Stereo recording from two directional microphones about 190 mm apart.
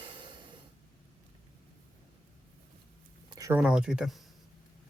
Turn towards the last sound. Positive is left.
turn(degrees=0)  # may be behind; listen again after turning